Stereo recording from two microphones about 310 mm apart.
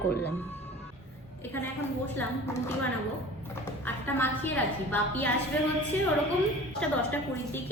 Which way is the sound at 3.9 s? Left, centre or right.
Centre.